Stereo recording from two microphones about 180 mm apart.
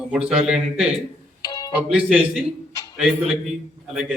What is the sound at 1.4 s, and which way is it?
Music, 20° left (ahead or behind).